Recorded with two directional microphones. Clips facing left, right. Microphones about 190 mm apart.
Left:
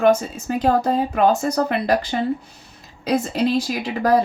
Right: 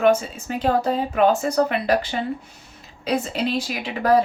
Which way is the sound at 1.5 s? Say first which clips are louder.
Even; 40° left (ahead or behind).